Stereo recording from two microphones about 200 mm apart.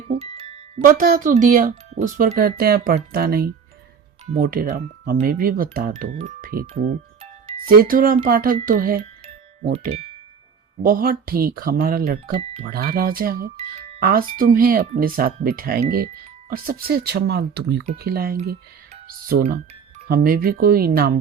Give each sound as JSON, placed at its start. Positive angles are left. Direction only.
{"t": 0.1, "sound": "music", "side_deg": -30}
{"t": 0.8, "sound": "speech", "side_deg": -45}
{"t": 6.8, "sound": "music", "side_deg": -30}
{"t": 7.6, "sound": "speech", "side_deg": -45}
{"t": 9.7, "sound": "speech", "side_deg": -30}
{"t": 10.8, "sound": "speech", "side_deg": -45}
{"t": 13.6, "sound": "speech", "side_deg": -30}
{"t": 14.0, "sound": "speech", "side_deg": -45}
{"t": 20.1, "sound": "speech", "side_deg": -45}